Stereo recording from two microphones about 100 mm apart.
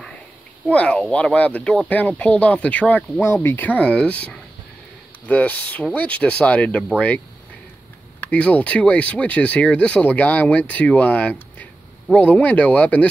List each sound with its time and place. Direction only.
0.7 s speech: 10° left (ahead or behind)
8.2 s speech: 15° left (ahead or behind)